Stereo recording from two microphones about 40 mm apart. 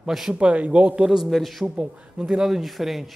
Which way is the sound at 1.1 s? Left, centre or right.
Centre.